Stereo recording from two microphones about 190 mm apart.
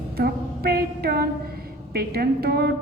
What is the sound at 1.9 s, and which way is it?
Speech, 55° right (ahead or behind).